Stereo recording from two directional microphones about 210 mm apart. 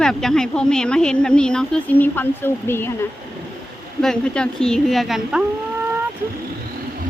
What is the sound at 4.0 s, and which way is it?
Speech, 5° left (ahead or behind).